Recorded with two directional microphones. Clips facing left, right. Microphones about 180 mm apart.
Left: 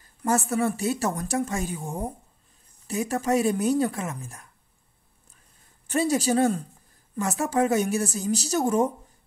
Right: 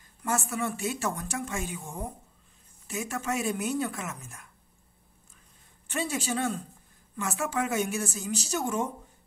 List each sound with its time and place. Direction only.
0.2 s a woman's voice: 40° left (ahead or behind)
5.9 s a woman's voice: 40° left (ahead or behind)